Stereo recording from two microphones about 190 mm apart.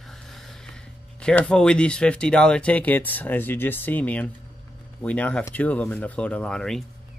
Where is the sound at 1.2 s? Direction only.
5° left (ahead or behind).